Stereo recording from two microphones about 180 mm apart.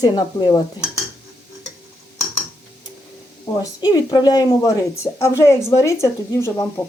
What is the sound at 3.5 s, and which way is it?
Speech, 25° left (ahead or behind).